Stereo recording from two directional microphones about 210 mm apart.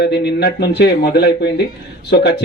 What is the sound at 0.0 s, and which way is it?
Speech, 50° left (ahead or behind).